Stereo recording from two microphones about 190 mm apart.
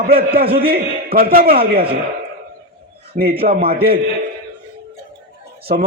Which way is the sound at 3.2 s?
50° right (ahead or behind).